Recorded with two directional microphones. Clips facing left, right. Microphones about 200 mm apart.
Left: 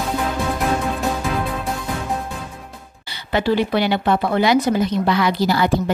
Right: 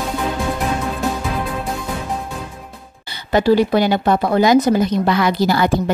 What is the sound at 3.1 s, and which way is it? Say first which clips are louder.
Speech: right 5 dB; 45° right (ahead or behind).